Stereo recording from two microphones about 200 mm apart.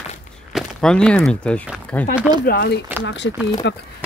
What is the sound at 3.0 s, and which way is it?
Speech, 60° left (ahead or behind).